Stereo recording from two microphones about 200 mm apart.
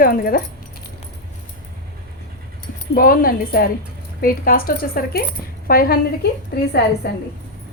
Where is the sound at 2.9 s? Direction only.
45° left (ahead or behind).